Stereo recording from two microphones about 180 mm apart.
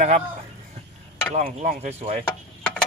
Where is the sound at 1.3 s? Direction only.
40° right (ahead or behind).